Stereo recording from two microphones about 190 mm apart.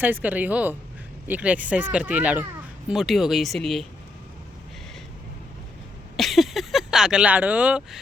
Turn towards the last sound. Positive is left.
turn(degrees=-5)  # may be behind; listen again after turning